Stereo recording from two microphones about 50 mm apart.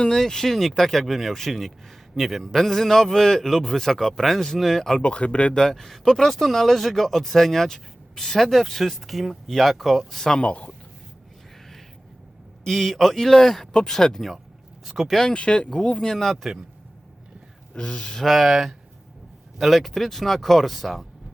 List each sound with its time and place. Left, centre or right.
0.0 s a man's voice: centre
4.9 s speech: left
5.7 s speech: centre
10.4 s speech: left
12.6 s a man's voice: centre
15.3 s a man's voice: left; by 16.6 s centre
17.7 s a man's voice: centre
18.3 s speech: centre